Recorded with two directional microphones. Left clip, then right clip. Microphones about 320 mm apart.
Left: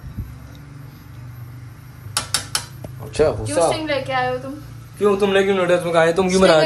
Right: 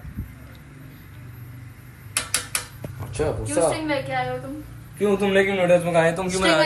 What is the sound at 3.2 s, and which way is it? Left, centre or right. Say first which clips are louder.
Speech: left 8 dB; left.